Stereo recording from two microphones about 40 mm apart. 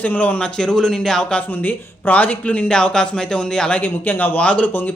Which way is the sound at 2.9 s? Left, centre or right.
Centre.